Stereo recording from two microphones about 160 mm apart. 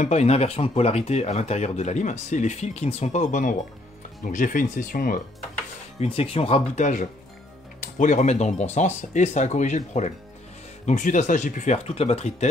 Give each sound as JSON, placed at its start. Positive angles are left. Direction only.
{"t": 0.0, "sound": "speech", "side_deg": 45}
{"t": 5.9, "sound": "speech", "side_deg": 35}